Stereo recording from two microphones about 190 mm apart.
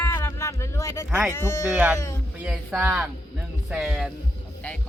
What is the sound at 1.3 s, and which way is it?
Speech, 15° left (ahead or behind).